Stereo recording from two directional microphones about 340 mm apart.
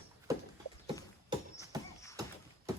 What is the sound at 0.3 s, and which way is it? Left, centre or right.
Clip-clop, centre.